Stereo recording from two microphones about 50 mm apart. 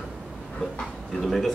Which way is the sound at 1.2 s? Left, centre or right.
Centre.